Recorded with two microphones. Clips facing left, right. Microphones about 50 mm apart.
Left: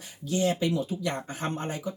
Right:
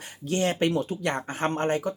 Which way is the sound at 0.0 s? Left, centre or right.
Right.